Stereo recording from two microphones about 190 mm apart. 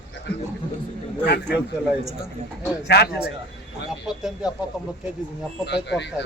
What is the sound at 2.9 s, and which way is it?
Speech, 55° left (ahead or behind).